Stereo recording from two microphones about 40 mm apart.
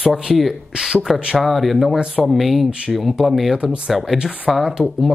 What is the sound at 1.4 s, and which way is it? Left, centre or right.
Speech, centre.